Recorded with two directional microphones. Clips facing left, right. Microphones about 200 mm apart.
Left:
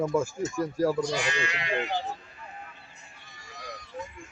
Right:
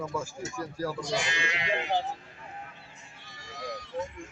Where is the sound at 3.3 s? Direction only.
90° right.